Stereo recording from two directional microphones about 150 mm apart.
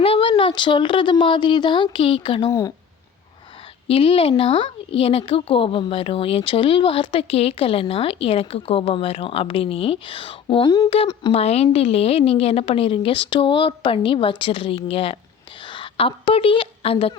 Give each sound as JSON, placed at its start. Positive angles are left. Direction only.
{"t": 0.0, "sound": "a woman's voice", "side_deg": 40}
{"t": 2.5, "sound": "speech", "side_deg": 20}
{"t": 3.8, "sound": "a woman's voice", "side_deg": 40}
{"t": 10.8, "sound": "a woman's voice", "side_deg": 40}